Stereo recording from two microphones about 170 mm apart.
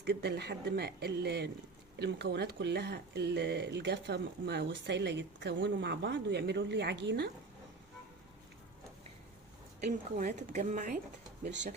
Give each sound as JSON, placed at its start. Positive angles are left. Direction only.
{"t": 0.0, "sound": "speech", "side_deg": -90}
{"t": 2.0, "sound": "speech", "side_deg": -85}
{"t": 9.8, "sound": "speech", "side_deg": -45}